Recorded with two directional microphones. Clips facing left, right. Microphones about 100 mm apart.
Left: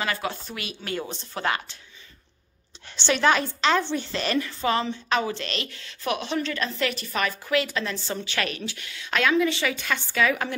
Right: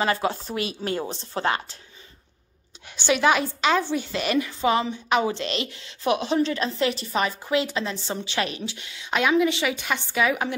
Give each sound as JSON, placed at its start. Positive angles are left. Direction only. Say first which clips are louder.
{"t": 0.0, "sound": "a woman's voice", "louder": "right 5 dB", "side_deg": -30}
{"t": 3.0, "sound": "a woman's voice", "louder": "right 1 dB", "side_deg": -10}